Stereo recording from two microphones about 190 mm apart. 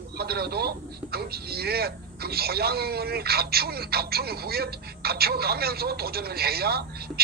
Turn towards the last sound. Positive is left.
turn(degrees=-55)  # may be behind; listen again after turning